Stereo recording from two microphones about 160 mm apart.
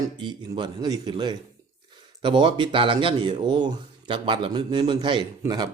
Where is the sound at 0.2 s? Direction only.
30° right (ahead or behind).